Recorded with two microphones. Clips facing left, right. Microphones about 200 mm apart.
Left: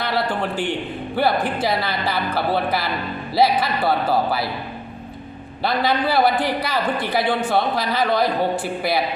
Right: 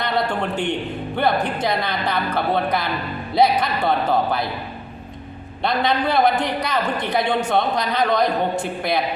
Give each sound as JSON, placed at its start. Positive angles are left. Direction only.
{"t": 0.0, "sound": "a man's voice", "side_deg": 5}
{"t": 5.6, "sound": "a man's voice", "side_deg": 5}